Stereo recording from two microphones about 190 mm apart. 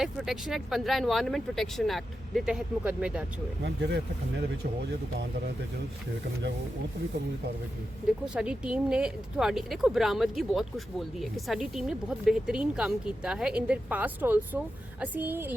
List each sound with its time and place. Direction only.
0.0 s speech: centre (ahead or behind)
3.6 s speech: 65° right (ahead or behind)
8.3 s a woman's voice: 5° right (ahead or behind)